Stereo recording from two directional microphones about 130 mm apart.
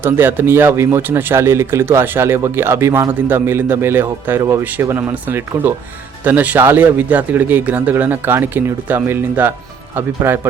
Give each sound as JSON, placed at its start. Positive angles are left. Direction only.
{"t": 0.0, "sound": "speech", "side_deg": -15}